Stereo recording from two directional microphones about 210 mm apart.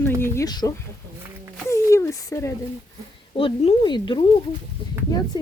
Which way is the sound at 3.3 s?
25° left (ahead or behind).